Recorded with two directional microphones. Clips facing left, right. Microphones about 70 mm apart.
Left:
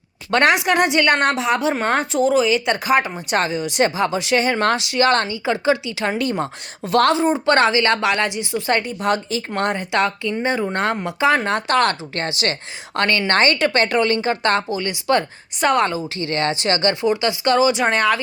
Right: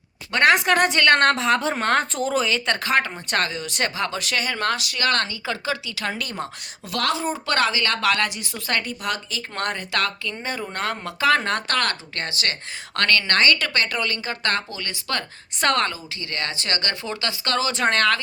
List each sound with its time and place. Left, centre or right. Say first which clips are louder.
0.5 s a woman's voice: left 2 dB; centre
15.9 s a woman's voice: left 9 dB; left